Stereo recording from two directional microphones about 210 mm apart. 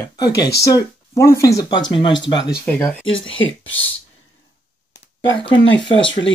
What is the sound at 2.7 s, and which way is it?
Speech, 5° left (ahead or behind).